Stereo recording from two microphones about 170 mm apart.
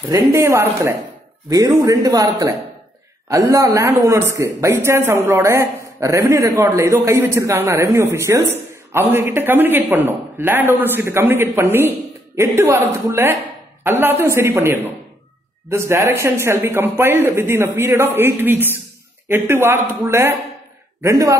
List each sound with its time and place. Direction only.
0.1 s a man's voice: 15° right (ahead or behind)